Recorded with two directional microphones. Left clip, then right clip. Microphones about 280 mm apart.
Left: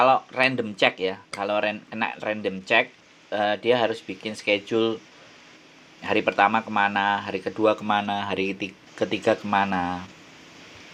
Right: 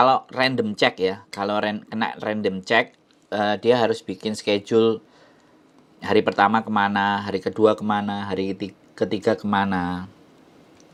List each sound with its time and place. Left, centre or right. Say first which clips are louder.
0.0 s speech: right 1 dB; right
6.0 s speech: right 2 dB; right